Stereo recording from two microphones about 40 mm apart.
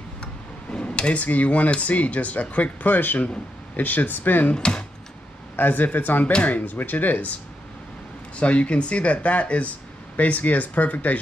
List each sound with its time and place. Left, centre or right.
0.2 s speech: left
4.6 s speech: left
5.6 s speech: left
8.4 s speech: left